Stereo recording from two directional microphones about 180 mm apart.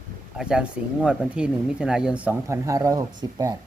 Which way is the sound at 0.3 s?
5° right (ahead or behind).